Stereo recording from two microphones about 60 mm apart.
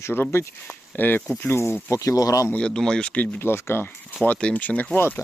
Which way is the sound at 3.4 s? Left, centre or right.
Left.